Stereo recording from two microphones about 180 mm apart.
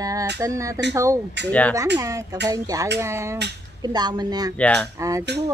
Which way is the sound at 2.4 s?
20° right (ahead or behind).